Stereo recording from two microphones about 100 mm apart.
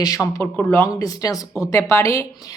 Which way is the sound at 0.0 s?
35° left (ahead or behind).